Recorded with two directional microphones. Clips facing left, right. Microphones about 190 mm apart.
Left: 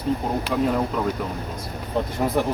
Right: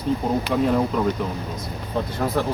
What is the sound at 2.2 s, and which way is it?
Speech, 15° left (ahead or behind).